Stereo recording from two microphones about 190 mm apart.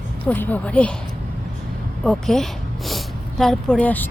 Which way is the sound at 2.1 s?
Centre (ahead or behind).